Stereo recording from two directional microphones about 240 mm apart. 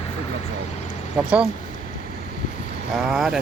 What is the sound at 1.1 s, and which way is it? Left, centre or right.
Speech, centre.